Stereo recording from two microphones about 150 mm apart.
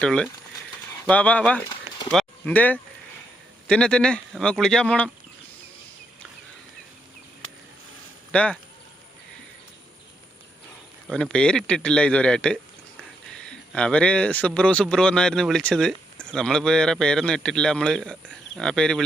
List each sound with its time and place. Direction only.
0.0 s speech: 5° left (ahead or behind)
8.3 s speech: 10° left (ahead or behind)
11.1 s speech: 5° left (ahead or behind)